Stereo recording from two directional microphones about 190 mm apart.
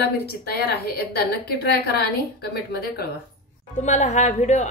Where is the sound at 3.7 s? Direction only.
40° left (ahead or behind).